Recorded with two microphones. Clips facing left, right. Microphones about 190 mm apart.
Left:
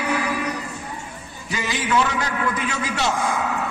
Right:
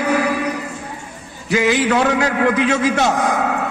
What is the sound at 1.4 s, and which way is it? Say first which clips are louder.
A man's voice: right 10 dB; 70° right (ahead or behind).